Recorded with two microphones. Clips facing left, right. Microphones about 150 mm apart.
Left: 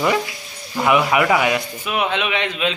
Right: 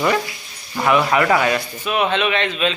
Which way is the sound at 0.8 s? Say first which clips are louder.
Even; 15° left (ahead or behind).